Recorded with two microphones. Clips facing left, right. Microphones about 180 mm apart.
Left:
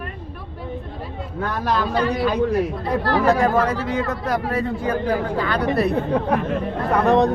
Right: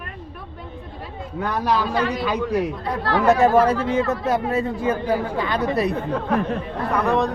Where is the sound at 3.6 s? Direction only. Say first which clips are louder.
Right 3 dB; 25° right (ahead or behind).